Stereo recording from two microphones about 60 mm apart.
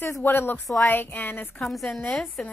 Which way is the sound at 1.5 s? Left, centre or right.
Centre.